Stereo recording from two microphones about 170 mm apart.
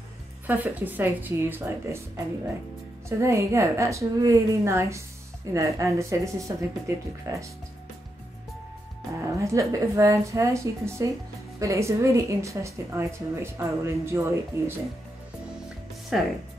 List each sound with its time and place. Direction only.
0.5 s speech: 10° right (ahead or behind)
3.1 s speech: 15° right (ahead or behind)
9.4 s speech: 20° right (ahead or behind)
16.1 s speech: centre (ahead or behind)